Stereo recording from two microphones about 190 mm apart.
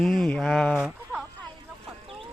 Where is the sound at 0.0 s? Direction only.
Centre (ahead or behind).